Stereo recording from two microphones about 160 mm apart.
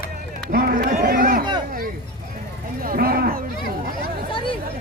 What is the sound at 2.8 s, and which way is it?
Livestock, 65° right (ahead or behind).